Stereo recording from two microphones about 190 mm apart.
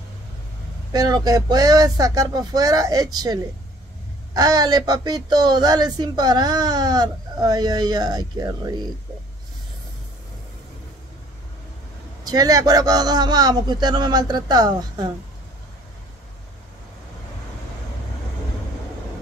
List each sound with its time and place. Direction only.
0.9 s speech: 20° right (ahead or behind)
12.3 s speech: 20° right (ahead or behind)